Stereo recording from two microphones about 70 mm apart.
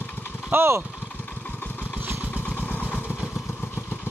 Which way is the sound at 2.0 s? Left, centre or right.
Right.